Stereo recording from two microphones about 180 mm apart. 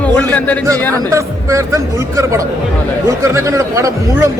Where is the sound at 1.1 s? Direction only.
15° right (ahead or behind).